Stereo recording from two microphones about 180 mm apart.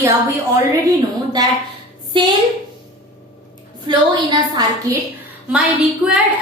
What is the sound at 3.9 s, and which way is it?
Speech, 20° right (ahead or behind).